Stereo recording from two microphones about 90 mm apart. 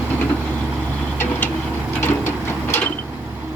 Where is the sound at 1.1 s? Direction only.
25° left (ahead or behind).